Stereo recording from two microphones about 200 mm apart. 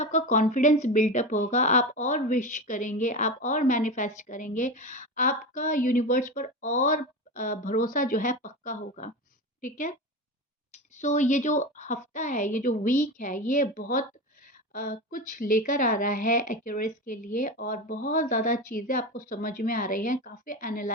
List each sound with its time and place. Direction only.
0.0 s a woman's voice: 35° left (ahead or behind)
10.9 s speech: 35° left (ahead or behind)